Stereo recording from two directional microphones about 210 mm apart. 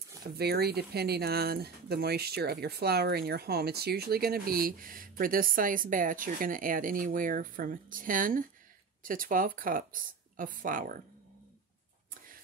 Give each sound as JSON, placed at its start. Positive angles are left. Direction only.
{"t": 0.4, "sound": "speech", "side_deg": -50}